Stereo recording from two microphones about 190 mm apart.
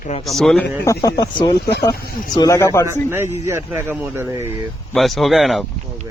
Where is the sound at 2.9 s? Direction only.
10° right (ahead or behind).